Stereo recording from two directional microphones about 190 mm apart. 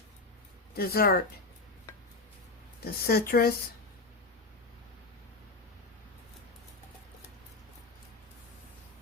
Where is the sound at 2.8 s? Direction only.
55° left (ahead or behind).